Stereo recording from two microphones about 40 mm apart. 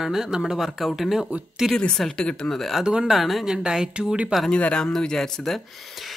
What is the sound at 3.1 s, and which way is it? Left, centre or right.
Speech, centre.